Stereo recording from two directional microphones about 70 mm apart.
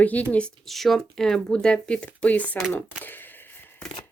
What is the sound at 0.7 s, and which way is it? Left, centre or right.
Speech, centre.